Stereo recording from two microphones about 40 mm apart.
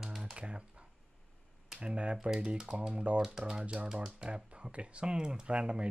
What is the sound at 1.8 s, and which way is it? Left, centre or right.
Speech, right.